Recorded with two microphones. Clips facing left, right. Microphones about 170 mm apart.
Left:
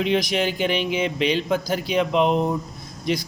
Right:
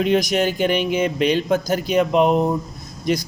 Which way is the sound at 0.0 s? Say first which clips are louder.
Right 3 dB; 45° right (ahead or behind).